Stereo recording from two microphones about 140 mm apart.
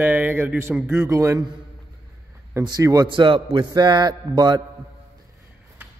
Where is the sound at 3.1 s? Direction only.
35° right (ahead or behind).